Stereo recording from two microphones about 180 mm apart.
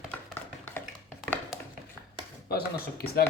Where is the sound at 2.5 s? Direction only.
60° left (ahead or behind).